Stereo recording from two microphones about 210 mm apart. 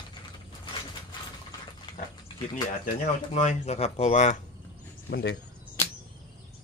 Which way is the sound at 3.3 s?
30° left (ahead or behind).